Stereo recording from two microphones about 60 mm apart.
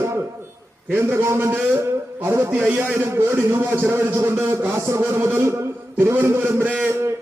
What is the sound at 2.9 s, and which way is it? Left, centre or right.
A man's voice, right.